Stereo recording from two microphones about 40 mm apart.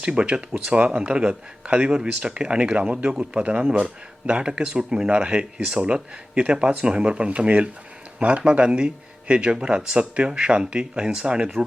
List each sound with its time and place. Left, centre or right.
0.0 s a man's voice: right
1.9 s a man's voice: centre